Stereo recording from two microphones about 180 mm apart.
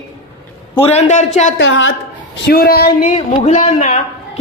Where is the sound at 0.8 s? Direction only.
35° left (ahead or behind).